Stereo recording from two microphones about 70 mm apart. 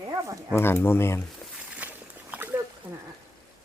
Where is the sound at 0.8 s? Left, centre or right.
Left.